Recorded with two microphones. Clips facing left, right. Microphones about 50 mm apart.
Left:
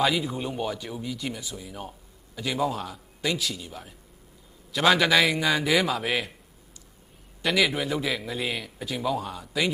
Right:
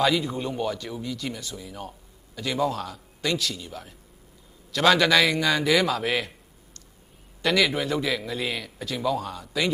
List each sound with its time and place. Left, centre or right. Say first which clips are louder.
0.0 s speech: right 2 dB; centre
7.4 s a man's voice: right 1 dB; centre